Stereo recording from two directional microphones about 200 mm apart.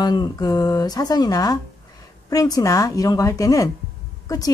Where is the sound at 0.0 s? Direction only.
20° left (ahead or behind).